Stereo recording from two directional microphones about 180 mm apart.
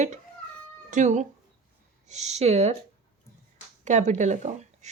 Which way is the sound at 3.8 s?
40° right (ahead or behind).